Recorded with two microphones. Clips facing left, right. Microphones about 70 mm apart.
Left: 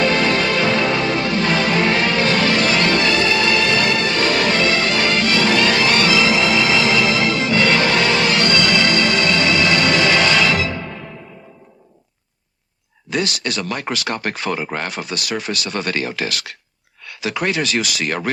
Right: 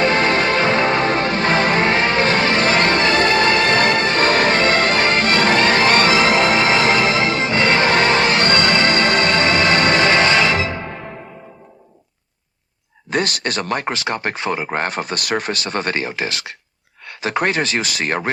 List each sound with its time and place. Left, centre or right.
0.0 s music: right
13.1 s speech: right
17.1 s speech: right